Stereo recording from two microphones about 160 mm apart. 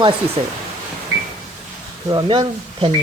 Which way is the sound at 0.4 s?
45° right (ahead or behind).